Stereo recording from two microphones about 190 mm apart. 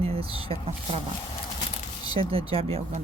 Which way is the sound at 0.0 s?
30° right (ahead or behind).